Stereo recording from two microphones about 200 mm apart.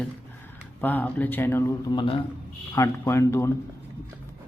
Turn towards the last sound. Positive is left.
turn(degrees=15)  # may be behind; listen again after turning